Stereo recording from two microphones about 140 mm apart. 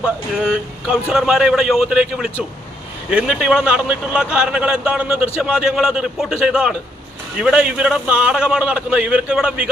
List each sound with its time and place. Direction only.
0.0 s a man's voice: 5° right (ahead or behind)